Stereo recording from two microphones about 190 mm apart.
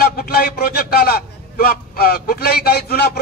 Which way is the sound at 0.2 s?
50° left (ahead or behind).